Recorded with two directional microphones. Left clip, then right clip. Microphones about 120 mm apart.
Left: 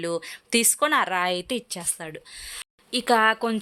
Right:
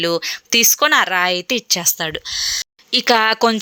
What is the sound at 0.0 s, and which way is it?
Speech, 15° right (ahead or behind).